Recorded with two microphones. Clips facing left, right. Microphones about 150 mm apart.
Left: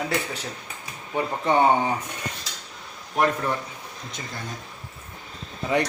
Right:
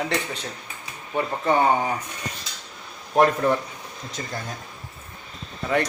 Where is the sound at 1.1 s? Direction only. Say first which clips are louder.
Even; 20° left (ahead or behind).